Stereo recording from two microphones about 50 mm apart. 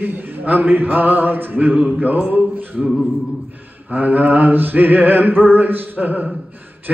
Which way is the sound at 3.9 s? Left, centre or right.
Right.